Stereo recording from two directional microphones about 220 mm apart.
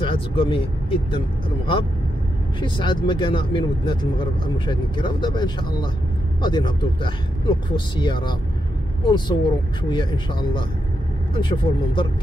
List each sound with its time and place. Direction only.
0.0 s speech: 25° left (ahead or behind)
2.6 s speech: 20° left (ahead or behind)